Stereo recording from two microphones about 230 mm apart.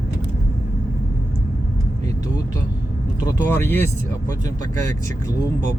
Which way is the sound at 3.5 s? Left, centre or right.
Centre.